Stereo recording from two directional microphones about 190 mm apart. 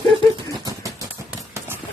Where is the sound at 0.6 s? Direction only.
15° right (ahead or behind).